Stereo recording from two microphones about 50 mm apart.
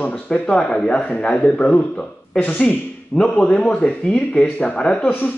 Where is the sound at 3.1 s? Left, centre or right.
Centre.